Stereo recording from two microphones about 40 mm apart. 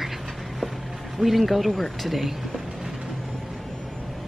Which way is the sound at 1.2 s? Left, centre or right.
Centre.